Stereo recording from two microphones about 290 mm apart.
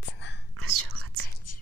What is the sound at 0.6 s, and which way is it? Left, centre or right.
Whispering, right.